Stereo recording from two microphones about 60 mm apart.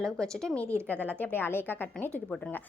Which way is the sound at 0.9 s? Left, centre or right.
Left.